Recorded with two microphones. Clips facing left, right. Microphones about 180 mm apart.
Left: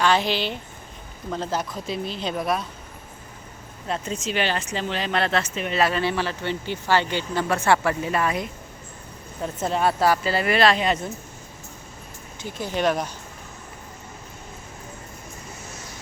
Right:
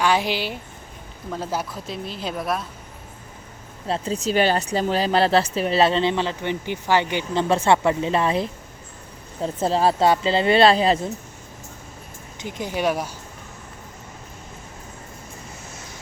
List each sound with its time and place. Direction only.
0.0 s a woman's voice: 10° right (ahead or behind)
3.8 s speech: 30° right (ahead or behind)
12.4 s speech: 15° right (ahead or behind)